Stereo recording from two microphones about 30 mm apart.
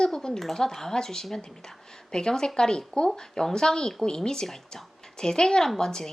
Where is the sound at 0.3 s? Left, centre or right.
Centre.